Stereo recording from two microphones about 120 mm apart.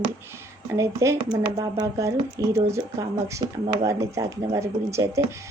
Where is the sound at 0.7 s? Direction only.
25° right (ahead or behind).